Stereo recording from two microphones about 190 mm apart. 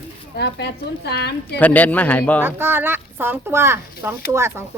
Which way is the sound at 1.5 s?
10° left (ahead or behind).